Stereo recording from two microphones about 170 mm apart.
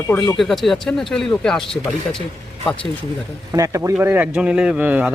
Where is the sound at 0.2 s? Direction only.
Centre (ahead or behind).